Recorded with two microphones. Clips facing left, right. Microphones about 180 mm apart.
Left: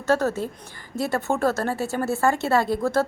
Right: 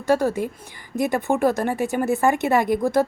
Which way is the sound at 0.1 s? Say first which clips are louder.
Right 2 dB; 10° right (ahead or behind).